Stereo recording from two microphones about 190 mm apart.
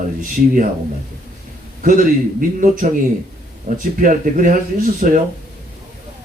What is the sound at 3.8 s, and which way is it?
Speech, 45° right (ahead or behind).